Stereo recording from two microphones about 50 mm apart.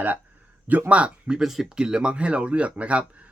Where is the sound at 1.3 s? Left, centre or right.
Centre; by 3.2 s right.